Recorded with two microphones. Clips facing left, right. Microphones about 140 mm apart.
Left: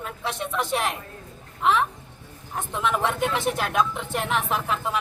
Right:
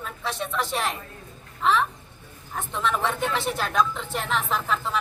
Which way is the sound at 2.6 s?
15° left (ahead or behind).